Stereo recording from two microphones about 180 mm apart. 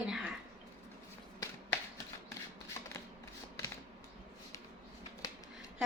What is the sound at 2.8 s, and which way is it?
Shuffling cards, 15° left (ahead or behind).